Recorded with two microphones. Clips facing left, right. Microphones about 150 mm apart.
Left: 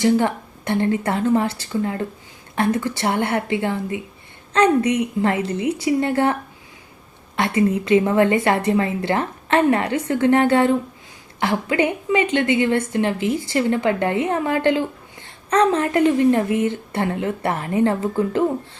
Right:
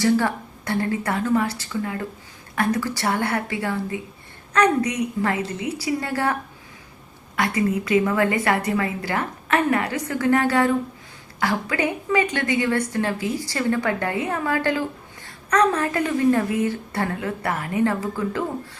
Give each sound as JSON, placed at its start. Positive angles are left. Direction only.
{"t": 0.0, "sound": "a woman's voice", "side_deg": 20}
{"t": 7.3, "sound": "a woman's voice", "side_deg": 25}